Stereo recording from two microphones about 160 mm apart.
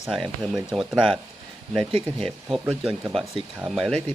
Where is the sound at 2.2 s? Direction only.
5° right (ahead or behind).